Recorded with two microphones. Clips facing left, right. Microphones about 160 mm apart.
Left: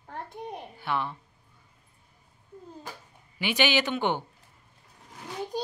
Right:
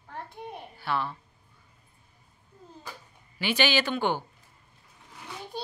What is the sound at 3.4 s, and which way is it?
Speech, 15° left (ahead or behind).